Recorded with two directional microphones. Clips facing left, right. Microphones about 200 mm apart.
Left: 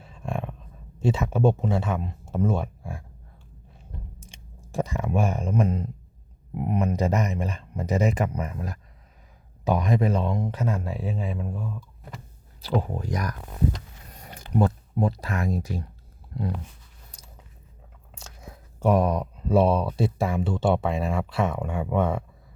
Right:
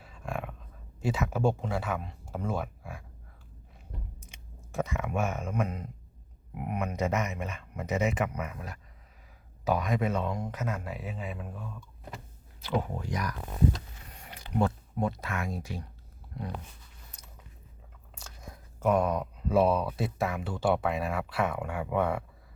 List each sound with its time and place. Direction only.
0.0 s a sound: 25° left (ahead or behind)
0.9 s speech: 25° left (ahead or behind)
4.2 s speech: 30° left (ahead or behind)
12.6 s speech: 40° left (ahead or behind)
14.1 s a sound: 40° left (ahead or behind)
14.9 s speech: 35° left (ahead or behind)
18.8 s speech: 30° left (ahead or behind)